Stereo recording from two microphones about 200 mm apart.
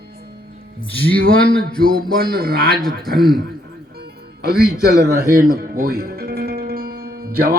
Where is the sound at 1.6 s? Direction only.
45° right (ahead or behind).